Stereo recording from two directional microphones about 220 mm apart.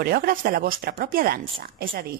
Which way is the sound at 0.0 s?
40° right (ahead or behind).